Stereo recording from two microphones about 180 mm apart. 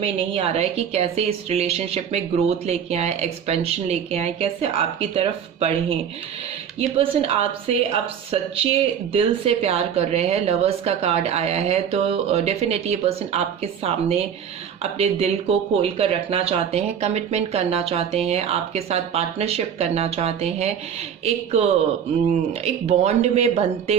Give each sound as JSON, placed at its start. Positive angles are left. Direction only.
{"t": 0.0, "sound": "speech", "side_deg": -30}